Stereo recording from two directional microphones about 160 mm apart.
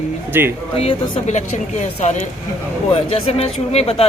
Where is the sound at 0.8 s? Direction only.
35° left (ahead or behind).